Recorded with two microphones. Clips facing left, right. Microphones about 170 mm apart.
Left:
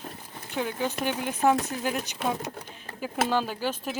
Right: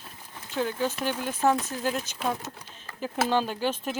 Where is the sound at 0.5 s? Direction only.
15° left (ahead or behind).